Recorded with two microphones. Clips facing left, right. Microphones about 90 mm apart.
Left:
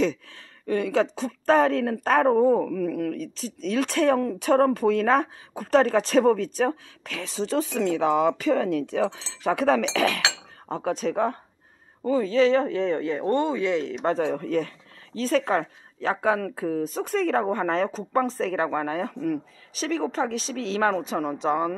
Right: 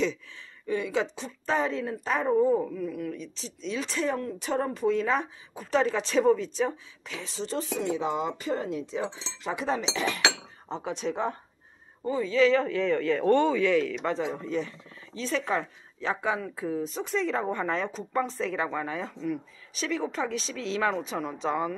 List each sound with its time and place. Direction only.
0.7 s speech: 55° left (ahead or behind); by 3.2 s 80° left
3.2 s speech: 50° left (ahead or behind)
6.7 s speech: 65° left (ahead or behind); by 10.2 s 85° left
10.7 s speech: 50° left (ahead or behind)
12.3 s speech: 35° left (ahead or behind)
13.3 s speech: 15° left (ahead or behind)
13.9 s speech: 40° left (ahead or behind)
14.2 s speech: 55° left (ahead or behind)
19.8 s speech: 40° left (ahead or behind)